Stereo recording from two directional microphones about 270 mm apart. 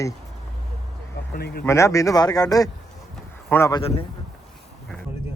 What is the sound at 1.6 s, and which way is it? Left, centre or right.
Speech, centre.